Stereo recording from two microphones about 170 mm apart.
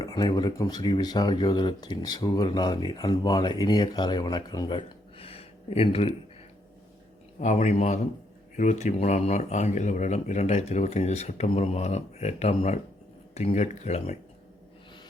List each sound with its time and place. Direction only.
0.0 s speech: 25° left (ahead or behind)
7.3 s a man's voice: 45° left (ahead or behind)